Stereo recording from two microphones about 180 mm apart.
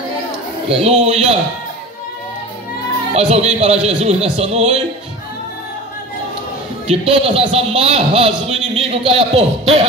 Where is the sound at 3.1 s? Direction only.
35° right (ahead or behind).